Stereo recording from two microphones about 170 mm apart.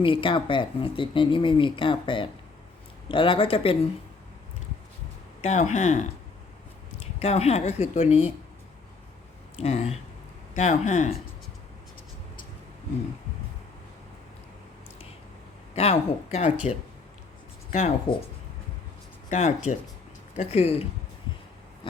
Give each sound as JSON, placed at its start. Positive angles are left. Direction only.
{"t": 0.0, "sound": "a woman's voice", "side_deg": 30}
{"t": 5.4, "sound": "a woman's voice", "side_deg": 40}
{"t": 7.2, "sound": "a woman's voice", "side_deg": 40}
{"t": 9.6, "sound": "a woman's voice", "side_deg": 40}
{"t": 15.7, "sound": "a woman's voice", "side_deg": 35}
{"t": 17.7, "sound": "speech", "side_deg": 40}
{"t": 19.3, "sound": "a woman's voice", "side_deg": 45}